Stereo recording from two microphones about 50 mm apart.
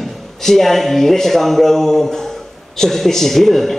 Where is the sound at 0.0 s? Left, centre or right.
Centre.